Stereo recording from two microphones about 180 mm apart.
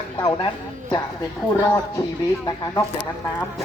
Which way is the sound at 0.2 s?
25° left (ahead or behind).